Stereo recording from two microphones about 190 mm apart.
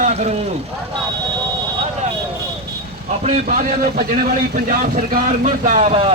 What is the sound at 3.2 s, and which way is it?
A man's voice, 40° right (ahead or behind).